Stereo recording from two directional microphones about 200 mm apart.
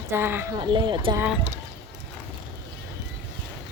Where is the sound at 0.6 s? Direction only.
25° right (ahead or behind).